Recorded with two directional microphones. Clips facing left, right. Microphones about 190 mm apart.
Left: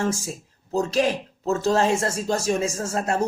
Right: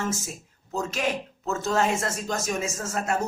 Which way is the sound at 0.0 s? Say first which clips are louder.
Left 5 dB; 30° left (ahead or behind).